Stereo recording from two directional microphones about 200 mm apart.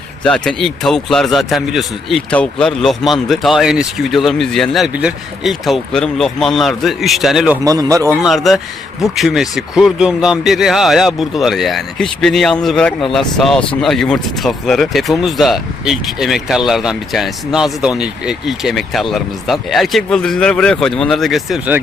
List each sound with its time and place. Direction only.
0.2 s speech: 5° left (ahead or behind)
7.6 s speech: 15° right (ahead or behind)
8.2 s speech: centre (ahead or behind)